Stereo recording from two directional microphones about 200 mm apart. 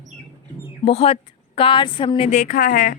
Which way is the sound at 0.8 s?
30° left (ahead or behind).